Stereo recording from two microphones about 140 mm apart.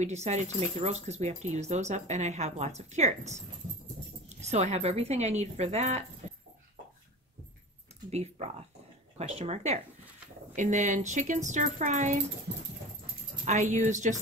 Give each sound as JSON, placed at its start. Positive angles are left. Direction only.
{"t": 0.0, "sound": "speech", "side_deg": -50}
{"t": 8.1, "sound": "speech", "side_deg": -50}
{"t": 13.5, "sound": "speech", "side_deg": -60}